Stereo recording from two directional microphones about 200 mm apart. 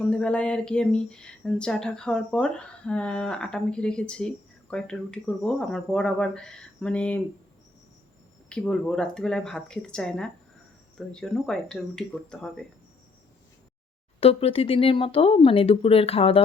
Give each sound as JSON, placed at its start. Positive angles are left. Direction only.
{"t": 0.1, "sound": "speech", "side_deg": 5}
{"t": 8.4, "sound": "speech", "side_deg": 5}
{"t": 14.2, "sound": "speech", "side_deg": 30}